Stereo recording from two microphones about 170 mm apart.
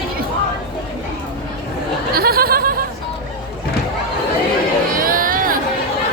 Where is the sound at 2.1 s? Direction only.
60° right (ahead or behind).